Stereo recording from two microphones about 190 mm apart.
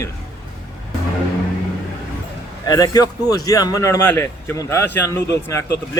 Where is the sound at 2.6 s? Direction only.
20° left (ahead or behind).